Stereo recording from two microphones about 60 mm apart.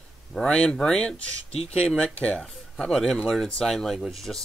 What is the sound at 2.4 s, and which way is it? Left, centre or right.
Speech, centre.